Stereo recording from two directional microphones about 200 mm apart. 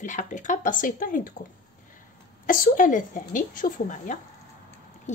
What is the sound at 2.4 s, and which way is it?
Speech, 40° left (ahead or behind).